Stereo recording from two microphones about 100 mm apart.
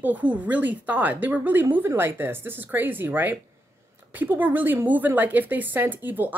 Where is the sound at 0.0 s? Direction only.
15° right (ahead or behind).